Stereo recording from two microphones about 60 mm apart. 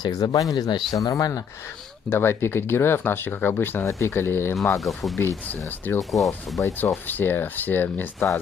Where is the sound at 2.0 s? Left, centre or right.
Left.